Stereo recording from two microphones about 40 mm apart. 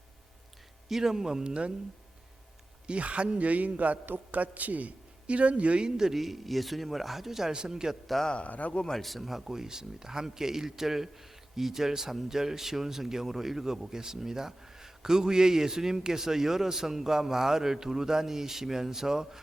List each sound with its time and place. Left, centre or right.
0.9 s a man's voice: centre
2.8 s a man's voice: right
4.0 s a man's voice: right
4.4 s a man's voice: right
6.0 s speech: centre
7.5 s a man's voice: centre
8.4 s speech: left
9.0 s speech: centre
9.5 s a man's voice: centre